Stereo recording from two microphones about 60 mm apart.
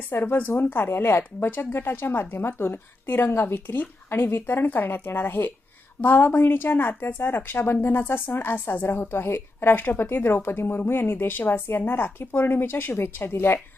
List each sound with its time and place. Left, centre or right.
0.1 s speech: left